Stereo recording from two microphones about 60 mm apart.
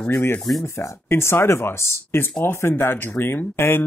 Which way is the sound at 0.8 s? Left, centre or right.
Left.